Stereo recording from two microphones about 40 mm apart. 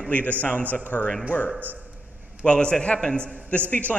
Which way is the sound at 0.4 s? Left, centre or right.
Left.